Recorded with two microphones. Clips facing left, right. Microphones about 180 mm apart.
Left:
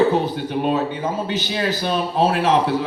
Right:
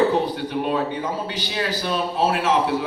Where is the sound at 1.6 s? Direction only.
30° left (ahead or behind).